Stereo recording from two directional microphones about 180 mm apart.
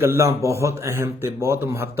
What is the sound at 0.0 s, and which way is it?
Speech, 15° right (ahead or behind).